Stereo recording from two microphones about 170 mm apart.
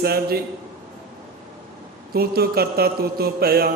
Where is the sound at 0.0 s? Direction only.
65° right (ahead or behind).